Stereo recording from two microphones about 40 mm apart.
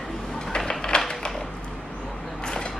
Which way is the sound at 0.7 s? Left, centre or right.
Centre.